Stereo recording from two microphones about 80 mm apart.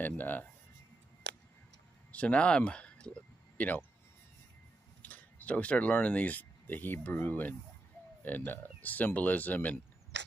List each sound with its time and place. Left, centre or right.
0.0 s speech: left
2.1 s speech: centre
5.0 s speech: centre